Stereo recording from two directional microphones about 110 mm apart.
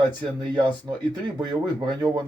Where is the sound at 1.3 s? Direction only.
40° right (ahead or behind).